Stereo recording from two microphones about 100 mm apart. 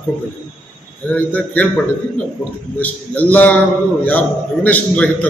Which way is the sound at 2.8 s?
15° left (ahead or behind).